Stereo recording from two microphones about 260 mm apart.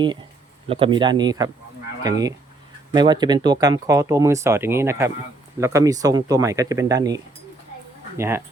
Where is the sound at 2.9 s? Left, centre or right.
Centre.